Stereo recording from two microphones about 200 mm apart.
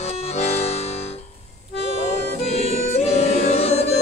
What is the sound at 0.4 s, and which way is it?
Music, 30° left (ahead or behind).